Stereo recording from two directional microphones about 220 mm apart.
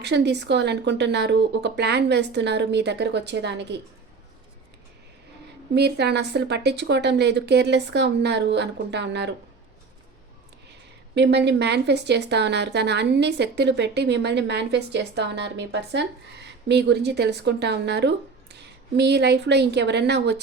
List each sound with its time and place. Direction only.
0.0 s speech: 50° right (ahead or behind)
5.7 s speech: 50° right (ahead or behind)
11.1 s a woman's voice: 50° right (ahead or behind)